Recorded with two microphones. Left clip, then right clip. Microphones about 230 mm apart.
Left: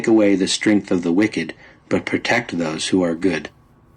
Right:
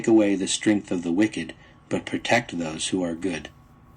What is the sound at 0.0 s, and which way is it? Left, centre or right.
Speech, left.